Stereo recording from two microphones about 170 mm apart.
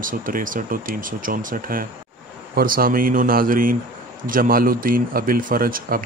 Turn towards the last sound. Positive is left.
turn(degrees=-60)  # may be behind; listen again after turning